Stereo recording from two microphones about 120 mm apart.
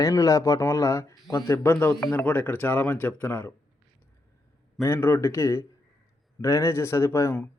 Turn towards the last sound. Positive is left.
turn(degrees=20)  # may be behind; listen again after turning